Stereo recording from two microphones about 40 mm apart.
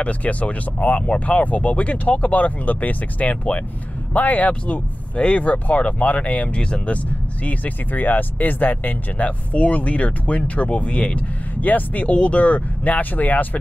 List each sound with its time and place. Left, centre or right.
0.0 s speech: left
12.1 s speech: left